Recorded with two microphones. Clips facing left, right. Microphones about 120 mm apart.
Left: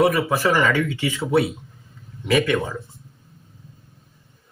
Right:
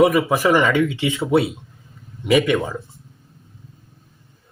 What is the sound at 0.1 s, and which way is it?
Speech, 15° right (ahead or behind).